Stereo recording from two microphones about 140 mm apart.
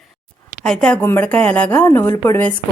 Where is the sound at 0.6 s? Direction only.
5° left (ahead or behind).